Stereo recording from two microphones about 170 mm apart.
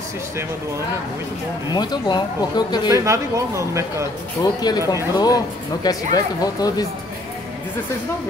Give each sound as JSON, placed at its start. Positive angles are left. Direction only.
{"t": 1.7, "sound": "speech", "side_deg": 25}
{"t": 2.9, "sound": "speech", "side_deg": -15}
{"t": 4.6, "sound": "speech", "side_deg": 25}